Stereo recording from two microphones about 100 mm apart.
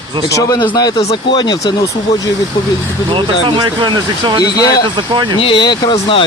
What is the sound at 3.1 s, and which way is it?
Speech, 55° right (ahead or behind).